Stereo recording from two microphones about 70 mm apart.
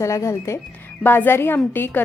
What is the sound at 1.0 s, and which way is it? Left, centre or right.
A woman's voice, left.